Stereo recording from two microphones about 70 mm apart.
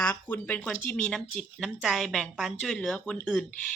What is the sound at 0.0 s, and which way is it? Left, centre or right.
Speech, left.